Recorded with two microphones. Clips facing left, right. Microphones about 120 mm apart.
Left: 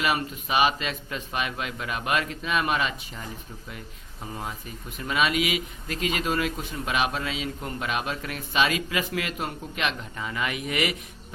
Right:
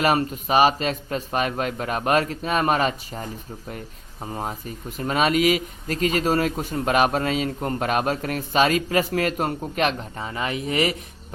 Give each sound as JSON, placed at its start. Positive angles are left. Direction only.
{"t": 0.0, "sound": "a man's voice", "side_deg": -40}